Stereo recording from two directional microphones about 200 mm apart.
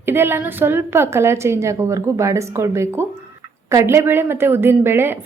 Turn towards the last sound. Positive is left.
turn(degrees=-10)  # may be behind; listen again after turning